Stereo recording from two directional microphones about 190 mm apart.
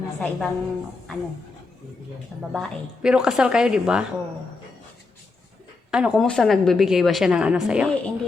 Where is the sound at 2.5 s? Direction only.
5° right (ahead or behind).